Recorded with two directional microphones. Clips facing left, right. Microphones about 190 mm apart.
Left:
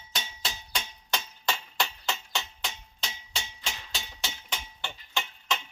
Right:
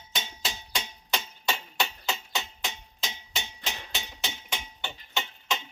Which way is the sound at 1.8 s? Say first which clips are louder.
Right 1 dB; 15° right (ahead or behind).